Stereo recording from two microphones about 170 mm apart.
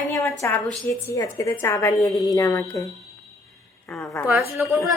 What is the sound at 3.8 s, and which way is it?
Speech, centre (ahead or behind).